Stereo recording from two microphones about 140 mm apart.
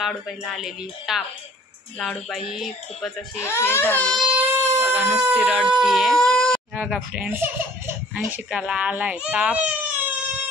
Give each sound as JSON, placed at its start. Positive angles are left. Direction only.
{"t": 0.0, "sound": "speech", "side_deg": 0}
{"t": 3.3, "sound": "speech", "side_deg": 20}
{"t": 4.1, "sound": "a sound", "side_deg": -5}
{"t": 5.3, "sound": "speech", "side_deg": -10}
{"t": 6.7, "sound": "speech", "side_deg": -10}